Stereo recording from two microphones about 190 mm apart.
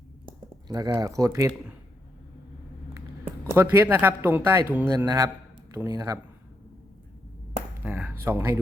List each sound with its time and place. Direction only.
0.5 s speech: 20° right (ahead or behind)
3.5 s speech: 10° right (ahead or behind)
7.9 s speech: 10° right (ahead or behind)